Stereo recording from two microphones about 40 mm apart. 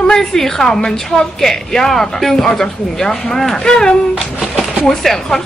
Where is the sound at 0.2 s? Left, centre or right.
Centre.